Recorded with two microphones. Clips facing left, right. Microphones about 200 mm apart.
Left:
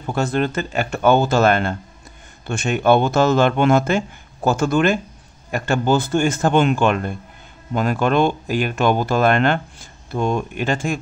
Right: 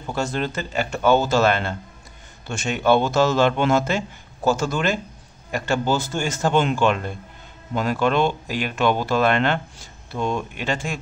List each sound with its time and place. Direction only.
0.1 s speech: 55° left (ahead or behind)